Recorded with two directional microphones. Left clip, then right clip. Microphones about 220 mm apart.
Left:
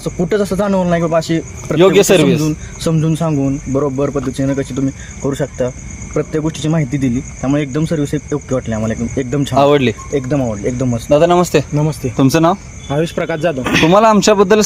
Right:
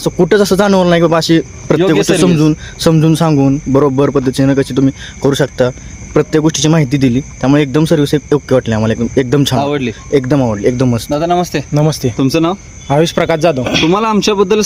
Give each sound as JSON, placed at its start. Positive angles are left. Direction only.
{"t": 0.0, "sound": "speech", "side_deg": -55}
{"t": 1.8, "sound": "speech", "side_deg": 20}
{"t": 2.4, "sound": "speech", "side_deg": -55}
{"t": 9.6, "sound": "speech", "side_deg": 20}
{"t": 10.1, "sound": "speech", "side_deg": -55}
{"t": 11.1, "sound": "speech", "side_deg": 15}
{"t": 11.7, "sound": "speech", "side_deg": -55}
{"t": 12.1, "sound": "speech", "side_deg": 5}
{"t": 12.9, "sound": "speech", "side_deg": -55}
{"t": 13.7, "sound": "speech", "side_deg": -20}
{"t": 13.9, "sound": "speech", "side_deg": 5}